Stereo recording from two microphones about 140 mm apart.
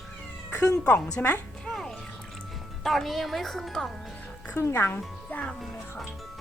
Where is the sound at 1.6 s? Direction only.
Centre (ahead or behind).